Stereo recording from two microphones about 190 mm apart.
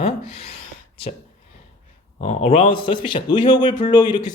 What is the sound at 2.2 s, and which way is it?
A man's voice, 35° left (ahead or behind).